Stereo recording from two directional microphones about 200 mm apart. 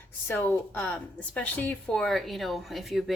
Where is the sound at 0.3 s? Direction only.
10° left (ahead or behind).